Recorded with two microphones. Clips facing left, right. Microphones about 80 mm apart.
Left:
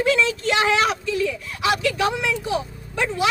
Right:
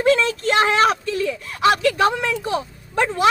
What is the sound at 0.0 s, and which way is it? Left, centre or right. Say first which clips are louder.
Speech: right 3 dB; right.